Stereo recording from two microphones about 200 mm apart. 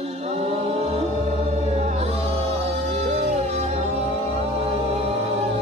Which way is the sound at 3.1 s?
35° right (ahead or behind).